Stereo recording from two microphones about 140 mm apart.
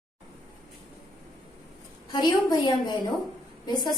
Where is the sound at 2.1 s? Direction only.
30° left (ahead or behind).